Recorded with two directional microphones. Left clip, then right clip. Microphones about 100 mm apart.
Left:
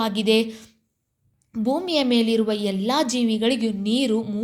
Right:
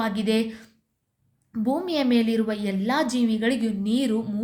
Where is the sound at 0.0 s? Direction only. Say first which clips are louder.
Left 4 dB; 25° left (ahead or behind).